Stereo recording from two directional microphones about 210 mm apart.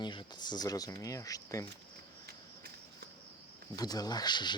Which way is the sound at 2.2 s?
50° right (ahead or behind).